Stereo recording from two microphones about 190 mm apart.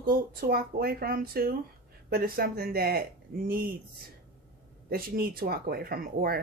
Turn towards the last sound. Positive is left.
turn(degrees=-55)  # may be behind; listen again after turning